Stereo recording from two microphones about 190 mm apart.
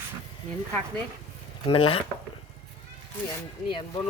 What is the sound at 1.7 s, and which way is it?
Speech, 30° left (ahead or behind).